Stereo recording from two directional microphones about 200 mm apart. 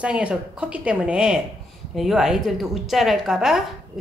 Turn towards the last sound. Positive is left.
turn(degrees=-5)  # may be behind; listen again after turning